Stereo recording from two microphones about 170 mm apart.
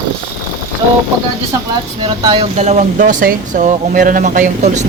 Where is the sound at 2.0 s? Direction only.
25° right (ahead or behind).